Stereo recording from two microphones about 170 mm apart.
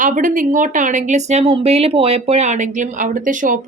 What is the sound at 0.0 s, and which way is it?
Speech, 50° right (ahead or behind).